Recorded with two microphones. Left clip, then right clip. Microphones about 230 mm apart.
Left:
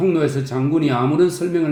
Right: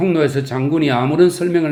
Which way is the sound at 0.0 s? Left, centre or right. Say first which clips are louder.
Right 2 dB; right.